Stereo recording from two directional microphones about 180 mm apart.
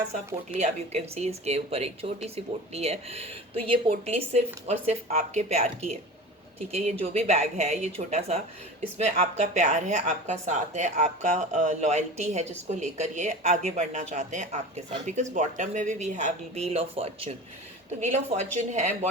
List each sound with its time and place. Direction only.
0.5 s speech: 40° right (ahead or behind)